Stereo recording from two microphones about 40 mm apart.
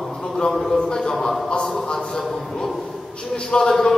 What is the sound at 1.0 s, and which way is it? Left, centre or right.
Speech, centre.